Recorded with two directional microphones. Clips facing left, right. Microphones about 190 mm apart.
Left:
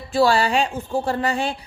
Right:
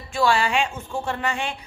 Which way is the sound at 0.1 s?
35° left (ahead or behind).